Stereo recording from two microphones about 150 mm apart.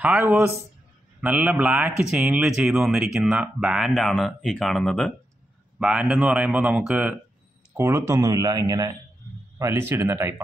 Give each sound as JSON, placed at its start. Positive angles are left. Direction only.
{"t": 0.0, "sound": "speech", "side_deg": -15}